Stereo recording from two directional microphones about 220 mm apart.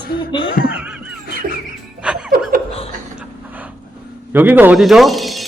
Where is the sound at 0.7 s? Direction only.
5° right (ahead or behind).